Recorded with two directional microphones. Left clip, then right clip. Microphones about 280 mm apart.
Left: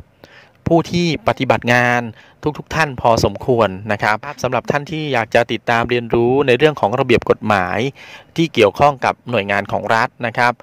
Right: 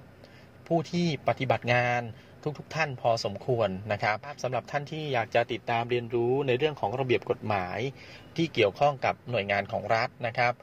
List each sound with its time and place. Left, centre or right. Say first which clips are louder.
0.7 s speech: left 13 dB; left